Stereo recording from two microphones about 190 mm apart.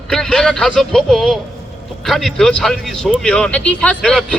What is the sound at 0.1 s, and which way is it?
A man's voice, 5° left (ahead or behind).